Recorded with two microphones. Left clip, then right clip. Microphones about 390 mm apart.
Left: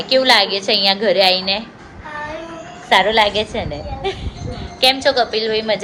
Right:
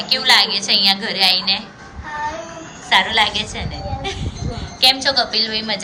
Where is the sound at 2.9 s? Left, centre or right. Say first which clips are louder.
Left 2 dB; centre.